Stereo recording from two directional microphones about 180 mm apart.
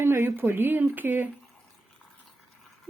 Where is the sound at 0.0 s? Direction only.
10° right (ahead or behind).